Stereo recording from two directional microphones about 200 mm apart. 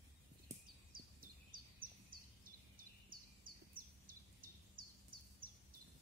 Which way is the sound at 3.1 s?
45° right (ahead or behind).